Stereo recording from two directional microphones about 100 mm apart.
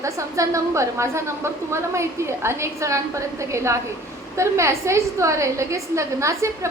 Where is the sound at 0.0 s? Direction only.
30° right (ahead or behind).